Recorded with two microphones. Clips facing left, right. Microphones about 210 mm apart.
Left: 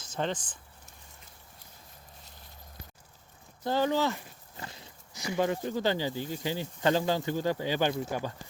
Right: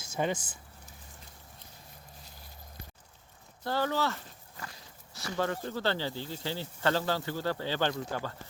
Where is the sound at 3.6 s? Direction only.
20° left (ahead or behind).